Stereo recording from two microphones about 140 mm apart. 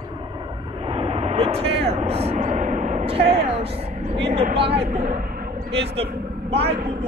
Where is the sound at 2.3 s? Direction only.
60° right (ahead or behind).